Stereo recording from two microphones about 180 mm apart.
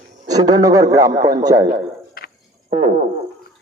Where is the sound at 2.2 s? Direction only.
55° left (ahead or behind).